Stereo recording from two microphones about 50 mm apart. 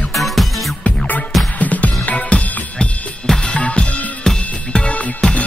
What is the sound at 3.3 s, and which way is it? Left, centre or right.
Drum kit, centre.